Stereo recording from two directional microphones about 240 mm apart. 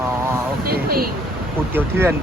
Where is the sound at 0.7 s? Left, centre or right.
Right.